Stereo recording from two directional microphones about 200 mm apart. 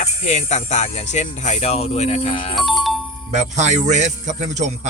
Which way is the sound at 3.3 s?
35° right (ahead or behind).